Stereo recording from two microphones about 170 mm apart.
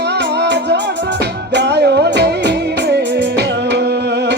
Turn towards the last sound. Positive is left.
turn(degrees=-80)